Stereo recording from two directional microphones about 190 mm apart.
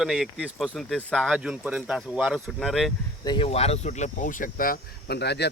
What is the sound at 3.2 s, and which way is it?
Speech, 20° left (ahead or behind).